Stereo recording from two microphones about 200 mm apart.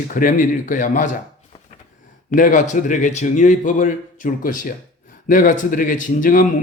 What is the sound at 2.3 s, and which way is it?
Speech, 40° left (ahead or behind).